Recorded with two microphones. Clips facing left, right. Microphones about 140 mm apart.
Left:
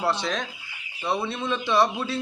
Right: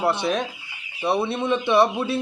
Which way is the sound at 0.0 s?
25° right (ahead or behind).